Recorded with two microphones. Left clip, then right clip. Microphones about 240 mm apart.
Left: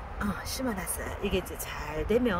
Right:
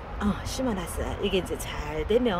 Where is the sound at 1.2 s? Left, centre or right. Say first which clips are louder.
Right 4 dB; centre.